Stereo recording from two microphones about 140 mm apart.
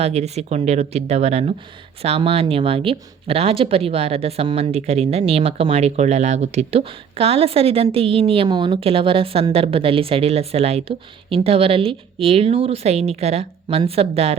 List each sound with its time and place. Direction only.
0.0 s speech: 50° right (ahead or behind)